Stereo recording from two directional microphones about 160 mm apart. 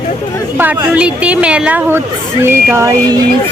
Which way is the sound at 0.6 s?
10° right (ahead or behind).